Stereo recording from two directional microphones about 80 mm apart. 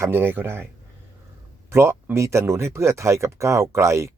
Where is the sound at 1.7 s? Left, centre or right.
Right.